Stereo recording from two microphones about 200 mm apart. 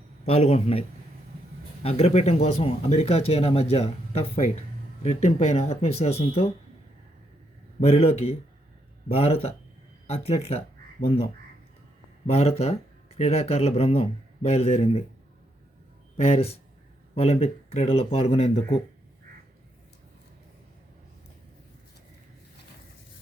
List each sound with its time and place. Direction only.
0.3 s a man's voice: 30° left (ahead or behind)
7.8 s a man's voice: 35° left (ahead or behind)
16.1 s speech: 30° left (ahead or behind)